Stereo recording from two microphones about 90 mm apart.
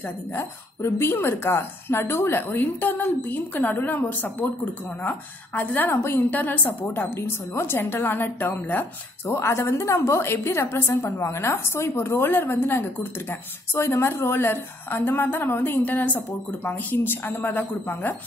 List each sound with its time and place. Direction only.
0.0 s a woman's voice: 25° left (ahead or behind)
9.3 s a woman's voice: 30° left (ahead or behind)